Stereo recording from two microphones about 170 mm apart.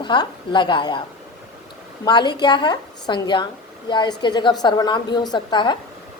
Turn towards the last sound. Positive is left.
turn(degrees=25)  # may be behind; listen again after turning